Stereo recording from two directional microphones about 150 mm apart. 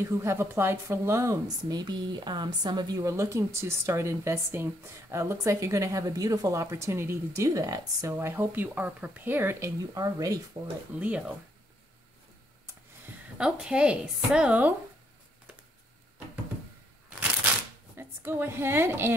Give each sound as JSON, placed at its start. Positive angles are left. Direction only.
{"t": 0.0, "sound": "a woman's voice", "side_deg": -15}
{"t": 11.0, "sound": "speech", "side_deg": -10}
{"t": 13.4, "sound": "speech", "side_deg": -5}
{"t": 17.4, "sound": "shuffling cards", "side_deg": -10}
{"t": 17.9, "sound": "a woman's voice", "side_deg": -15}